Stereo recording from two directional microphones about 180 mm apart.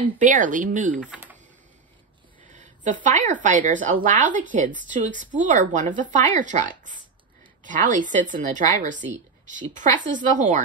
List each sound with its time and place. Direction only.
0.2 s speech: 45° right (ahead or behind)
2.5 s speech: 40° right (ahead or behind)